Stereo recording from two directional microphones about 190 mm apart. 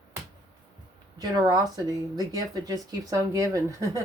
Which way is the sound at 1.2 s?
20° right (ahead or behind).